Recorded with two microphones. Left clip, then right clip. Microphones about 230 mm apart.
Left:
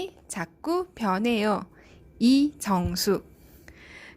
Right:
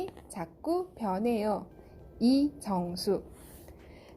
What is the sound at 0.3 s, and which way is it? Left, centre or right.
A woman's voice, left.